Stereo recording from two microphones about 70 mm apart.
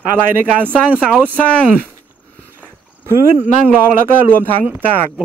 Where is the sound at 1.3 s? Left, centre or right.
Centre.